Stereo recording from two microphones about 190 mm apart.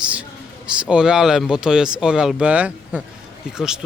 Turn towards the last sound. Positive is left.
turn(degrees=-5)  # may be behind; listen again after turning